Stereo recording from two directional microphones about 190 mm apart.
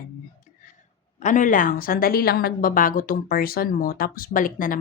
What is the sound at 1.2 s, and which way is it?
A woman's voice, 40° left (ahead or behind).